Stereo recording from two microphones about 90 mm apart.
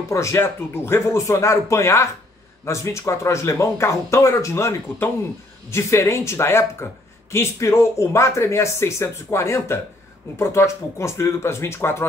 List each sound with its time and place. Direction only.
0.1 s speech: 35° left (ahead or behind)